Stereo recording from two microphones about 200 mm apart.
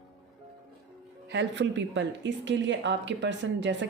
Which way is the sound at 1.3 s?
60° right (ahead or behind).